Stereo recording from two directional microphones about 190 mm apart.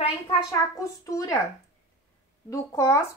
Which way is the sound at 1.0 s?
15° left (ahead or behind).